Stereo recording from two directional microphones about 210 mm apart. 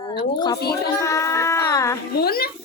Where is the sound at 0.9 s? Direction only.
15° left (ahead or behind).